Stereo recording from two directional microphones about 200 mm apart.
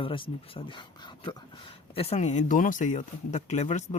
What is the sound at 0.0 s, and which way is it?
Speech, 25° left (ahead or behind).